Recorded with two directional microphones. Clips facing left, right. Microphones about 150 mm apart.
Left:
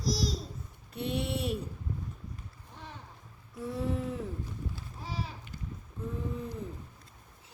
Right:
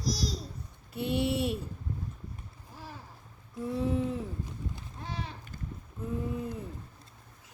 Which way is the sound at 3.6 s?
Centre (ahead or behind).